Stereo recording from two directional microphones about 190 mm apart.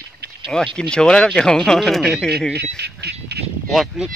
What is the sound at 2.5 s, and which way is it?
Duck, 60° right (ahead or behind).